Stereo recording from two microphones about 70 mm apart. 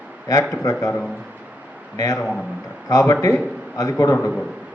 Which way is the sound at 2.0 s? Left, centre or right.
Left.